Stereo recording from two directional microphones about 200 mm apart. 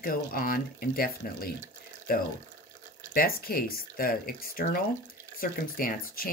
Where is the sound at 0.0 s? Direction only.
45° left (ahead or behind).